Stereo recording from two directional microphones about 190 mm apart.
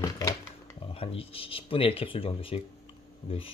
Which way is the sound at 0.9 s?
30° left (ahead or behind).